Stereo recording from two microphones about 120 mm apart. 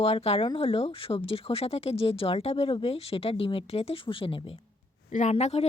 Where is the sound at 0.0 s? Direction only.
55° left (ahead or behind).